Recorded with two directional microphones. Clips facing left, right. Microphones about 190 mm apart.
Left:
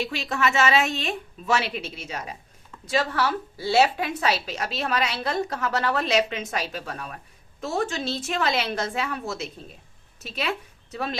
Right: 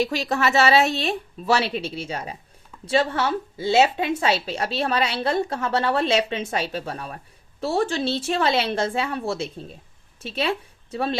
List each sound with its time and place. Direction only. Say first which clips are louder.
0.0 s a woman's voice: right 4 dB; 40° right (ahead or behind)